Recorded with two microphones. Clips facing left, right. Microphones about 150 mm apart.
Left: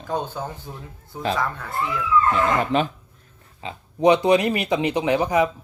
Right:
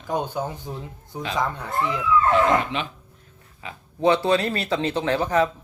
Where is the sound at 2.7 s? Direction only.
40° left (ahead or behind).